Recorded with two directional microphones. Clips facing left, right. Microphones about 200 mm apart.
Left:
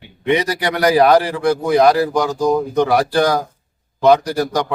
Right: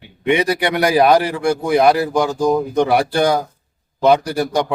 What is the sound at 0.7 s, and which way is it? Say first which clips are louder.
A man's voice: left 2 dB; 15° right (ahead or behind).